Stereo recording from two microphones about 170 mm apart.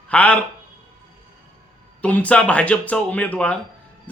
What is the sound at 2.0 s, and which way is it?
Speech, 10° left (ahead or behind).